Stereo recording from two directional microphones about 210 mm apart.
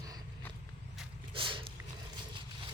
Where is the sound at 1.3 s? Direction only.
25° right (ahead or behind).